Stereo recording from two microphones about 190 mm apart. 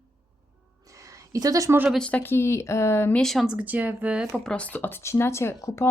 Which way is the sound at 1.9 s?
5° left (ahead or behind).